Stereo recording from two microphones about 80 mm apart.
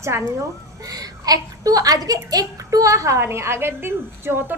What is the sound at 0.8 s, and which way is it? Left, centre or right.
A woman's voice, right.